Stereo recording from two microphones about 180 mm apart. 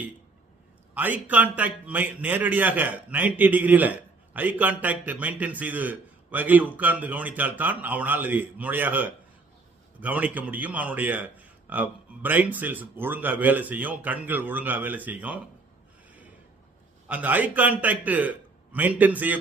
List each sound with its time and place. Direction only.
0.9 s a man's voice: 10° right (ahead or behind)
17.1 s a man's voice: 10° right (ahead or behind)